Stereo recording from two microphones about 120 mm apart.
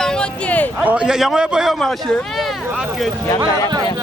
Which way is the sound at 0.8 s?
10° right (ahead or behind).